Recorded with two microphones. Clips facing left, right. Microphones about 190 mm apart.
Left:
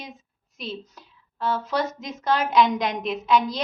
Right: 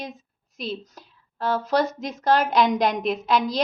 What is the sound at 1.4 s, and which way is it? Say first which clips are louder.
A woman's voice: right 3 dB; 35° right (ahead or behind).